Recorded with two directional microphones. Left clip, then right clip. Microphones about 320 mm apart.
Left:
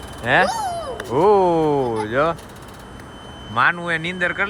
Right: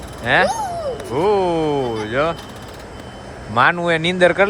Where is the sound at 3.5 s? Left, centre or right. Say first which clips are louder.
Right 3 dB; centre.